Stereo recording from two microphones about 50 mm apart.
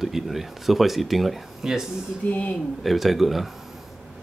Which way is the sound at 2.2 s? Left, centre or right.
Left.